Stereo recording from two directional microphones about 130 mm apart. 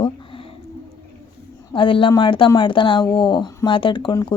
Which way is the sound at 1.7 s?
40° left (ahead or behind).